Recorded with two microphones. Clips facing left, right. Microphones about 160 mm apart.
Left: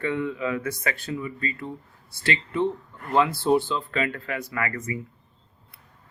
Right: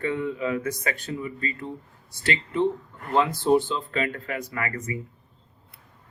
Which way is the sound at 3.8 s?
25° right (ahead or behind).